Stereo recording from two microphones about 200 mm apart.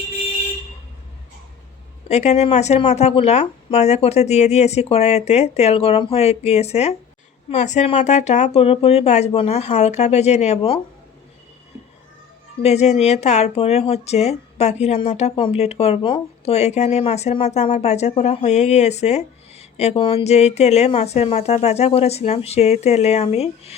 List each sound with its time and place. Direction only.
2.0 s speech: 35° left (ahead or behind)
12.6 s speech: 35° left (ahead or behind)